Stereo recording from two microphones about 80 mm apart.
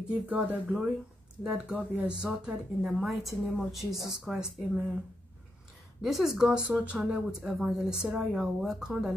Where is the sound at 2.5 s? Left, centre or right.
Centre.